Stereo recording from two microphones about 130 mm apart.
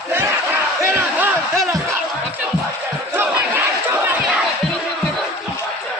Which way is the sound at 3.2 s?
15° right (ahead or behind).